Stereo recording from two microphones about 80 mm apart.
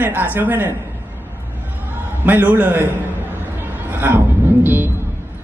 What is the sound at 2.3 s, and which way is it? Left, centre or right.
Speech, right.